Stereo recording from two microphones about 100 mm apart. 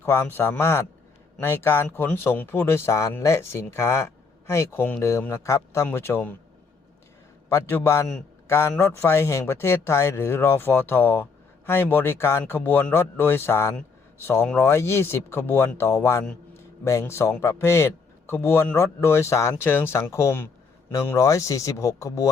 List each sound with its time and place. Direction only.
0.0 s a man's voice: 25° left (ahead or behind)
7.5 s a man's voice: 25° left (ahead or behind)